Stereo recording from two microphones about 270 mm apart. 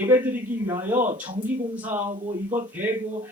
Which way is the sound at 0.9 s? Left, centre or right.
Right.